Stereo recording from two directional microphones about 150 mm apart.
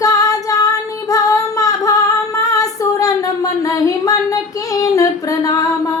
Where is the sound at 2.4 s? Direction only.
25° left (ahead or behind).